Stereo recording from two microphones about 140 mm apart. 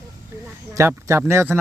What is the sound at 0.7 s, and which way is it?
Speech, 20° right (ahead or behind).